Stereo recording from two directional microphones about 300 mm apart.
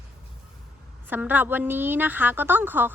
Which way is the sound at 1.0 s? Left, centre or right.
Centre.